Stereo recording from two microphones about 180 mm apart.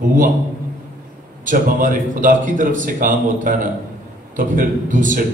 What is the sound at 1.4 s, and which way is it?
A man's voice, 50° right (ahead or behind).